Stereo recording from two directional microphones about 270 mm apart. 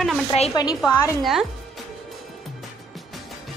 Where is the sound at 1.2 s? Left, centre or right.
Centre.